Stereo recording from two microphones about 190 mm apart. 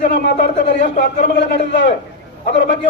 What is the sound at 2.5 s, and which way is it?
Speech, 70° left (ahead or behind).